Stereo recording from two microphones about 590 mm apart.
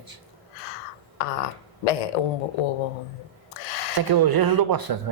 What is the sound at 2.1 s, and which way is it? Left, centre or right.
Speech, left.